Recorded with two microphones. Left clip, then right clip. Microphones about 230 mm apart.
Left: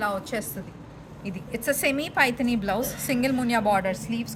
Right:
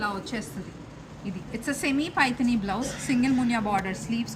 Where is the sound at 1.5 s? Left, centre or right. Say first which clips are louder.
Left 3 dB; left.